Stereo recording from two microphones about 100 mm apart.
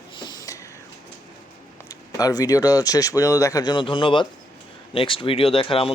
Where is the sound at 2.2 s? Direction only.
35° left (ahead or behind).